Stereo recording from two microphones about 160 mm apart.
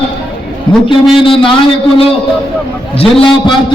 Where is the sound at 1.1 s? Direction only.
35° left (ahead or behind).